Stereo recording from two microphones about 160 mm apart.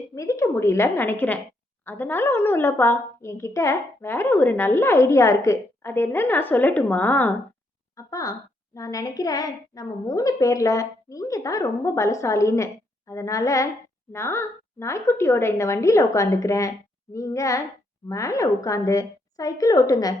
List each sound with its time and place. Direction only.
0.1 s a woman's voice: 20° left (ahead or behind)
7.9 s a child's voice: 20° left (ahead or behind)